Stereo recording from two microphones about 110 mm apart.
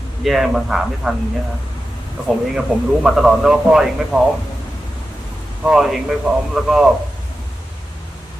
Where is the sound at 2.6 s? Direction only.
5° right (ahead or behind).